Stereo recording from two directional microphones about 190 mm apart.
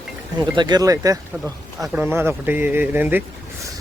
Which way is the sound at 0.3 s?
20° right (ahead or behind).